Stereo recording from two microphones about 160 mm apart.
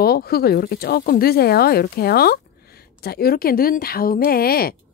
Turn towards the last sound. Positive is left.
turn(degrees=70)  # may be behind; listen again after turning